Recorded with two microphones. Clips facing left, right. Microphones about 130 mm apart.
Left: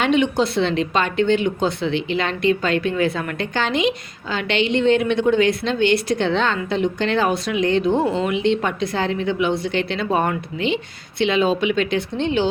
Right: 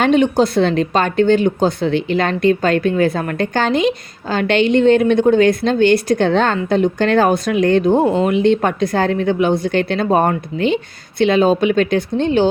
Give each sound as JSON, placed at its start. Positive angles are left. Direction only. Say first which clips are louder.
{"t": 0.0, "sound": "speech", "louder": "right 5 dB", "side_deg": -40}